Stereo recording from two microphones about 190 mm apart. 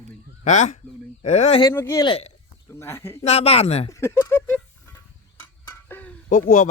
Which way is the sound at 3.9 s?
15° left (ahead or behind).